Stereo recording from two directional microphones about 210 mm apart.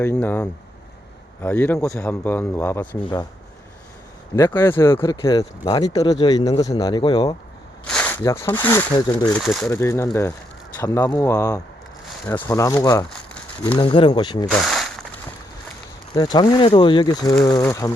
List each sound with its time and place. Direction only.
0.0 s speech: 10° left (ahead or behind)
4.4 s speech: 10° left (ahead or behind)
7.9 s speech: 5° left (ahead or behind)
9.6 s speech: 15° left (ahead or behind)
14.6 s speech: centre (ahead or behind)
16.1 s speech: 20° left (ahead or behind)